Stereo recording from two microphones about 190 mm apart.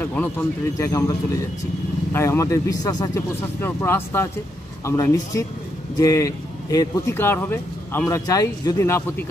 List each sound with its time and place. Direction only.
0.0 s speech: 10° left (ahead or behind)
2.1 s speech: 15° left (ahead or behind)